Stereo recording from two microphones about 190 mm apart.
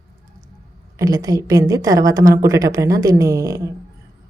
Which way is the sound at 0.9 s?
20° right (ahead or behind).